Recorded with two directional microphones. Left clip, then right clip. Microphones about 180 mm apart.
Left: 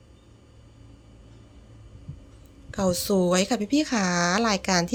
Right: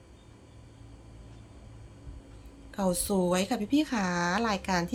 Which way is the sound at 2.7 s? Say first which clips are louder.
Left 5 dB; 30° left (ahead or behind).